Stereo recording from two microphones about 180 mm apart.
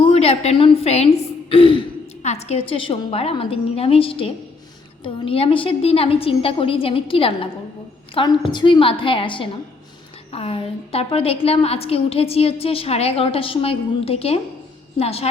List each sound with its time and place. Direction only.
0.0 s a woman's voice: 35° left (ahead or behind)